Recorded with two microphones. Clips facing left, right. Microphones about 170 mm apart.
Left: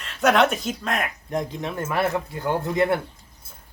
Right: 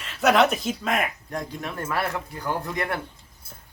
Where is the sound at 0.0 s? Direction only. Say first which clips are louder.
Even; centre (ahead or behind).